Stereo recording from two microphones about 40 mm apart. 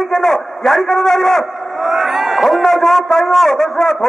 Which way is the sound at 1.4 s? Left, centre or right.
Centre.